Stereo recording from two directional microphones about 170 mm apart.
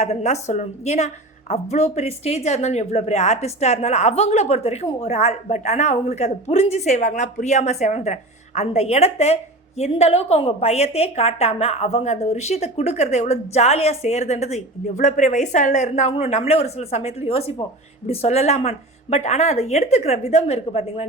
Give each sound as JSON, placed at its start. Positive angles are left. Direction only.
{"t": 0.0, "sound": "a woman's voice", "side_deg": 40}